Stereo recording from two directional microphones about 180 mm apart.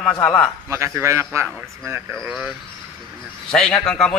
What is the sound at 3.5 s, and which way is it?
Speech, 5° left (ahead or behind).